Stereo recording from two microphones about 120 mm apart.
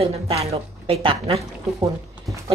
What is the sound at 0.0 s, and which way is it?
A woman's voice, 55° right (ahead or behind).